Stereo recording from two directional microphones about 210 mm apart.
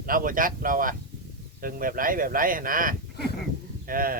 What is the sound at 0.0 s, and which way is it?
Speech, 40° right (ahead or behind).